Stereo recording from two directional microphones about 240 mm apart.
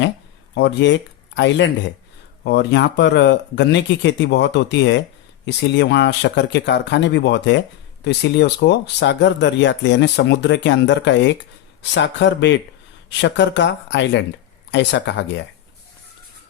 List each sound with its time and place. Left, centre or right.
0.5 s speech: left